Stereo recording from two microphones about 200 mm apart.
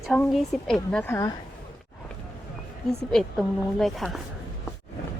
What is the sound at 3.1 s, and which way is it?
Speech, centre (ahead or behind).